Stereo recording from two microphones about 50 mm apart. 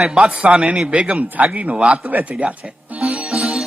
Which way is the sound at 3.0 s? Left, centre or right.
Right.